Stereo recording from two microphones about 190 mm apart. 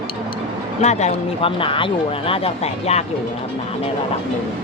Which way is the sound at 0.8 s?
35° left (ahead or behind).